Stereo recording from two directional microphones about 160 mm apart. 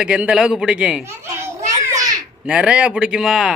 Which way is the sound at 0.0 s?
5° right (ahead or behind).